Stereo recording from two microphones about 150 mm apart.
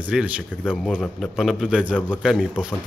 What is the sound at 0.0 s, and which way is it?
Speech, 10° right (ahead or behind).